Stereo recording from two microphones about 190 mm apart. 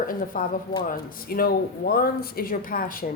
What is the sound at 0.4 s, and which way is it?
A woman's voice, 45° left (ahead or behind).